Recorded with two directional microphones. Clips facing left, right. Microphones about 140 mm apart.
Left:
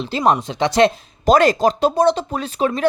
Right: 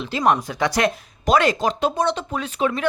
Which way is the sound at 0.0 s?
30° left (ahead or behind).